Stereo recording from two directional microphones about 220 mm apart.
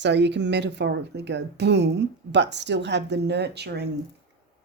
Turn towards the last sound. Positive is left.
turn(degrees=-50)  # may be behind; listen again after turning